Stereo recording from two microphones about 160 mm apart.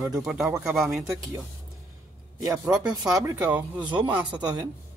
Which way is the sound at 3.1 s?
15° right (ahead or behind).